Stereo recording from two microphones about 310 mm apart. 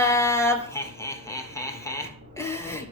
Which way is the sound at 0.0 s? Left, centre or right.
Centre.